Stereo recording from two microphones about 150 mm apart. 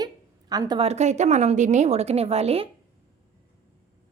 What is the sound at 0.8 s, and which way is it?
A woman's voice, 45° right (ahead or behind).